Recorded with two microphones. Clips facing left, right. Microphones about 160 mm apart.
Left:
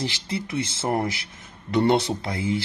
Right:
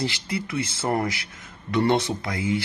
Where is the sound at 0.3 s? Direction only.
25° left (ahead or behind).